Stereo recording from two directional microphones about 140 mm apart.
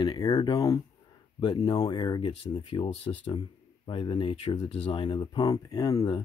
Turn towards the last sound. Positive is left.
turn(degrees=25)  # may be behind; listen again after turning